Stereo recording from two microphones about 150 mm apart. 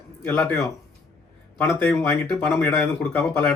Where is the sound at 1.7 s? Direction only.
10° left (ahead or behind).